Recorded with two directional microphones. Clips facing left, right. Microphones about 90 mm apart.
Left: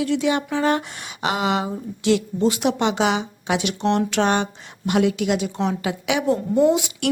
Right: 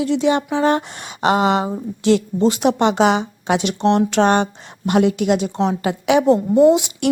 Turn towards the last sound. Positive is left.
turn(degrees=-25)  # may be behind; listen again after turning